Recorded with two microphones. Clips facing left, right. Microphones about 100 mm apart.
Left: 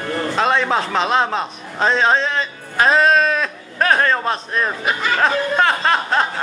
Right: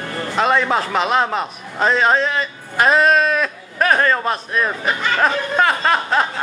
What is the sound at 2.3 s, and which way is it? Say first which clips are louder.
Music: even; 5° right (ahead or behind).